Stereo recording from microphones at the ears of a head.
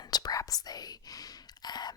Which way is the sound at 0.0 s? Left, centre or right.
Left.